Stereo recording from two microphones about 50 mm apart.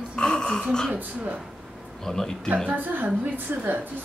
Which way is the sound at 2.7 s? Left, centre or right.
Right.